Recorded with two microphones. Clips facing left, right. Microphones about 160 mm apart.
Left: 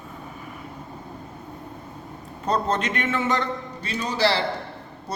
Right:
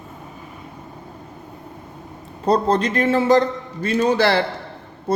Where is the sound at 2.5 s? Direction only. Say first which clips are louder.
Right 6 dB; 35° right (ahead or behind).